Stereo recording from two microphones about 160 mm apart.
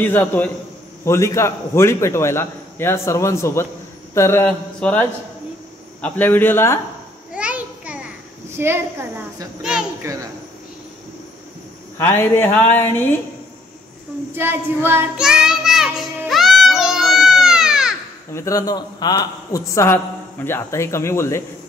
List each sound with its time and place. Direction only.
0.0 s a man's voice: 15° left (ahead or behind)
7.3 s children playing: 10° right (ahead or behind)
8.5 s a child's voice: 15° right (ahead or behind)
12.0 s a man's voice: 15° left (ahead or behind)
14.3 s speech: 15° right (ahead or behind)
15.1 s child singing: 5° right (ahead or behind)
18.3 s a man's voice: 20° left (ahead or behind)